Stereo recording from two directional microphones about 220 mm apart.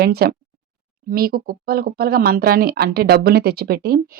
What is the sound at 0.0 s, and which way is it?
Speech, 45° right (ahead or behind).